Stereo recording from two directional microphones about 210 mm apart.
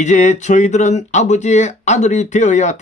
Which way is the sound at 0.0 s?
35° left (ahead or behind).